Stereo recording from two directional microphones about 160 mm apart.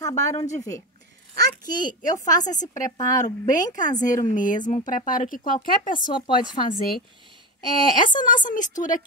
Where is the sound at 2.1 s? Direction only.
50° left (ahead or behind).